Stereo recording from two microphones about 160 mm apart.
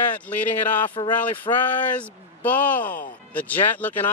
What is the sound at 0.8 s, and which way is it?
Speech, 30° left (ahead or behind).